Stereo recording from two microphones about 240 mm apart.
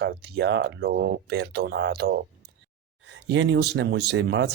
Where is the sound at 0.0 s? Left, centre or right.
Right.